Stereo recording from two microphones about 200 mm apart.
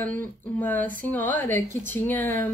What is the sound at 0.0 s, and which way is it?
A woman's voice, 10° left (ahead or behind).